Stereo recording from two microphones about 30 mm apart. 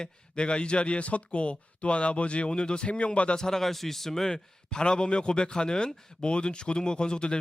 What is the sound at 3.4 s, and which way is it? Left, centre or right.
Speech, centre.